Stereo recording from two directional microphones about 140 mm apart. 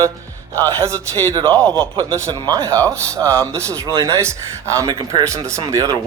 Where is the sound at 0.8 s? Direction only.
20° right (ahead or behind).